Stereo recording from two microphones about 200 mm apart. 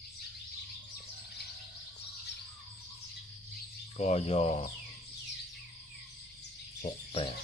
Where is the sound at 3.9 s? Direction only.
30° left (ahead or behind).